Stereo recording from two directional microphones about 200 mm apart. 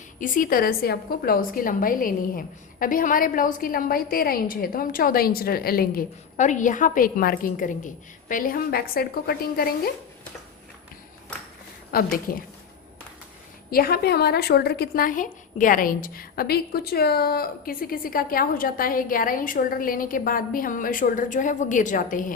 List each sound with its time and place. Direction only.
0.2 s a woman's voice: 40° left (ahead or behind)
11.9 s a woman's voice: 45° left (ahead or behind)
13.7 s a woman's voice: 50° left (ahead or behind)